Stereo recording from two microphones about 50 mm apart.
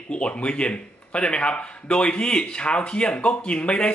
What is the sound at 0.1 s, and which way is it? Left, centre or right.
Speech, left.